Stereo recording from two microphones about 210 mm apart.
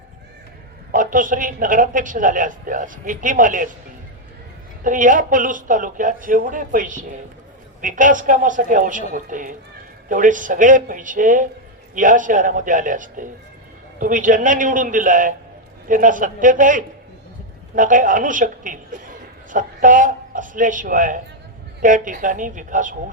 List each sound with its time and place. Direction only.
0.9 s a man's voice: 40° right (ahead or behind)
4.8 s a man's voice: 40° right (ahead or behind)